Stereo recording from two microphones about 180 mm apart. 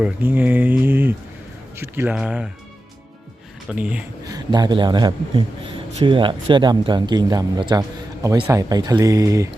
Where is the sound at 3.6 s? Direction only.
5° right (ahead or behind).